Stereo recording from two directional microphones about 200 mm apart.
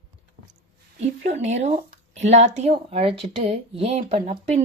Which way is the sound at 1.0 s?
35° right (ahead or behind).